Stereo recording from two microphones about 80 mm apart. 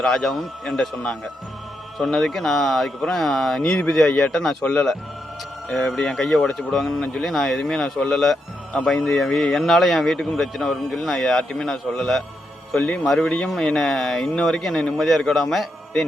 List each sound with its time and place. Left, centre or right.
0.0 s speech: centre